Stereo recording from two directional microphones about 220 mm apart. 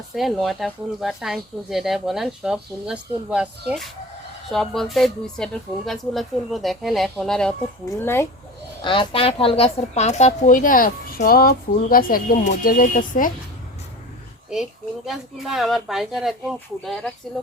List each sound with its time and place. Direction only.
0.1 s speech: centre (ahead or behind)
8.8 s speech: 20° left (ahead or behind); by 13.3 s 40° left (ahead or behind)
14.5 s speech: centre (ahead or behind)